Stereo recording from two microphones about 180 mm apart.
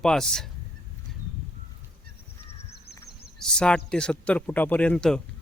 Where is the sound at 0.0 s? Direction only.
5° left (ahead or behind).